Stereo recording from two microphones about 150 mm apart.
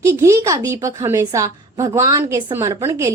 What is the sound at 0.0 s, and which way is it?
A woman's voice, 20° right (ahead or behind).